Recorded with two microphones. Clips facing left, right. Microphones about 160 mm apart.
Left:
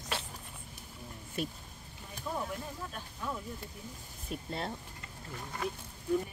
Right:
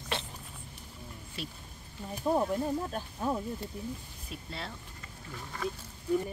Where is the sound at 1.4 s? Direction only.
50° left (ahead or behind).